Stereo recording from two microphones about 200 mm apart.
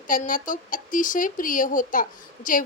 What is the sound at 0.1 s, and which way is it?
A woman's voice, 40° left (ahead or behind).